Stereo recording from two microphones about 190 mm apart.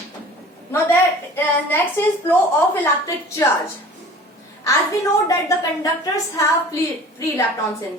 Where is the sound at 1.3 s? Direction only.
10° left (ahead or behind).